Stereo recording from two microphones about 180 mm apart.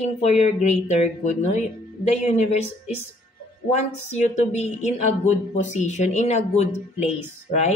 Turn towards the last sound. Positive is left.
turn(degrees=40)  # may be behind; listen again after turning